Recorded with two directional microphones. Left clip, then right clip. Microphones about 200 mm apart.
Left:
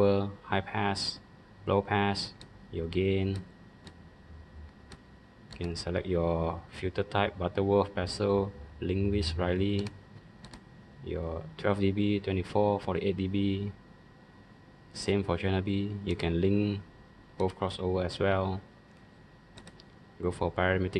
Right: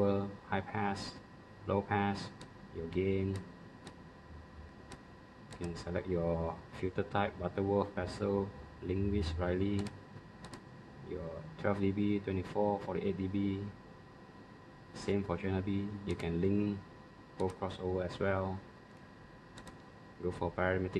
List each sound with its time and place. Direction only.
0.0 s speech: 50° left (ahead or behind)
5.7 s speech: 45° left (ahead or behind)
11.1 s speech: 45° left (ahead or behind)
15.0 s speech: 45° left (ahead or behind)
20.2 s speech: 45° left (ahead or behind)